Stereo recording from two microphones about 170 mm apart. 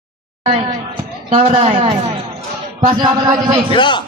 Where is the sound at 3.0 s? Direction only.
25° right (ahead or behind).